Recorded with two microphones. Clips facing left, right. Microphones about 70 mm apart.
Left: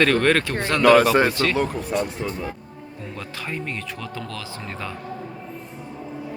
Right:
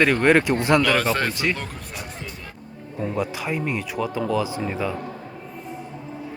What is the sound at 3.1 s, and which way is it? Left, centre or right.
Speech, centre.